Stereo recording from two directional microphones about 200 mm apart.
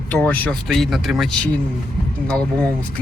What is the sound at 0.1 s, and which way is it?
Speech, 10° left (ahead or behind).